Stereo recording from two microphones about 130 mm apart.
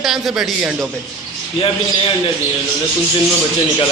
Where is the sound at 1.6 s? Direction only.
40° left (ahead or behind).